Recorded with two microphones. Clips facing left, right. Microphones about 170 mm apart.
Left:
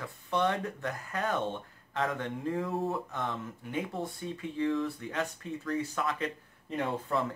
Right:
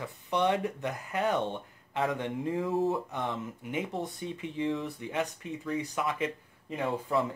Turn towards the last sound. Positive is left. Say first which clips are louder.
# right 2 dB
turn(degrees=-5)  # may be behind; listen again after turning